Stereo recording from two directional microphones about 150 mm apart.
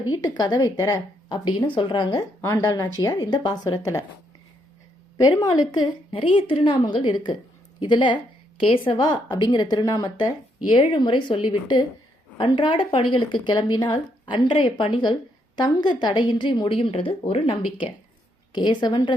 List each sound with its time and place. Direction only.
0.2 s a woman's voice: 25° left (ahead or behind)
5.1 s a woman's voice: 25° left (ahead or behind)